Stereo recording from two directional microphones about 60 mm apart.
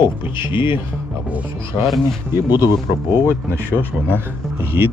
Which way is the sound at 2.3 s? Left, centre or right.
Right.